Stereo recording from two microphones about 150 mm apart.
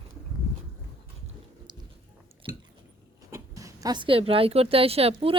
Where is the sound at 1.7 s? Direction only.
30° right (ahead or behind).